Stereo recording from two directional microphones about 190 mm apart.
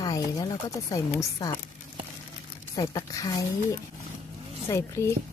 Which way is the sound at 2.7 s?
20° left (ahead or behind).